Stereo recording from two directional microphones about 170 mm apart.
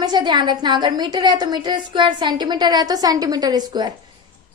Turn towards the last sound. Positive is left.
turn(degrees=-25)  # may be behind; listen again after turning